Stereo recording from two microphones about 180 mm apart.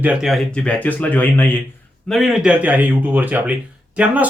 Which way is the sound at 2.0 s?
Centre (ahead or behind).